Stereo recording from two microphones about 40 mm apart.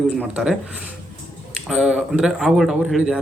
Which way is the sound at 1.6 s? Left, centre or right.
Centre.